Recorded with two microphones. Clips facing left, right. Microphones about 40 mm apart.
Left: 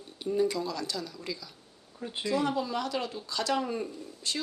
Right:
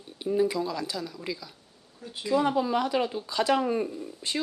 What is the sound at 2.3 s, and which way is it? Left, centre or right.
Speech, centre.